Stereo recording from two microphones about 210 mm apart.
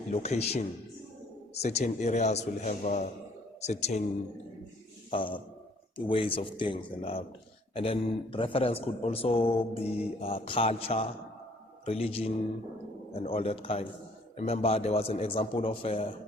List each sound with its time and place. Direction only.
0.1 s speech: 30° left (ahead or behind)
1.6 s speech: 30° left (ahead or behind)
5.1 s a man's voice: 25° left (ahead or behind)
9.4 s mantra: 5° right (ahead or behind)
9.7 s a man's voice: 30° left (ahead or behind)